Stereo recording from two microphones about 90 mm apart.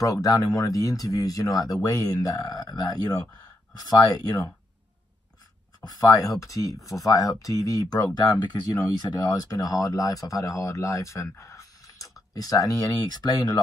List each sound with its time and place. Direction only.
0.0 s speech: 40° left (ahead or behind)
5.9 s speech: 45° left (ahead or behind)